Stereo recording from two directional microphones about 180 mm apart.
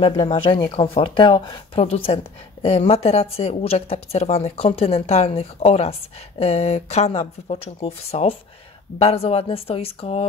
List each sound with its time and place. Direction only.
0.2 s speech: 25° left (ahead or behind)